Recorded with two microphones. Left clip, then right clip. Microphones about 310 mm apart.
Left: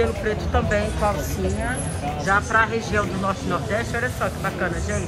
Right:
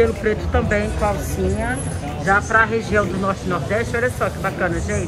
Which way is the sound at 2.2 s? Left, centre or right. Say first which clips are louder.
Right 4 dB; centre.